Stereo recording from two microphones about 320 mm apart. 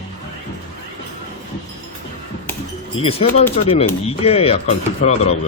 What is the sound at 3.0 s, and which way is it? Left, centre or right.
Speech, centre.